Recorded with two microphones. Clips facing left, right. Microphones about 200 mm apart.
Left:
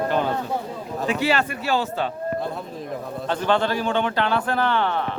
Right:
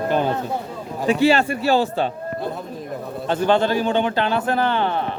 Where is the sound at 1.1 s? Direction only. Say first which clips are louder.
Right 6 dB; 30° right (ahead or behind).